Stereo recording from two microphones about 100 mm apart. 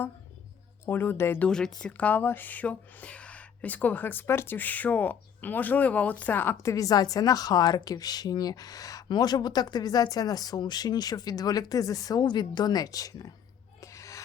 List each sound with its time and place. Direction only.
0.9 s speech: 20° left (ahead or behind)
1.5 s speech: 5° left (ahead or behind); by 13.3 s 35° left (ahead or behind)
13.8 s snort: 30° left (ahead or behind)